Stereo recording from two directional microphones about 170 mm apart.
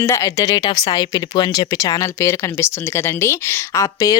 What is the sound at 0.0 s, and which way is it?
Speech, 15° left (ahead or behind).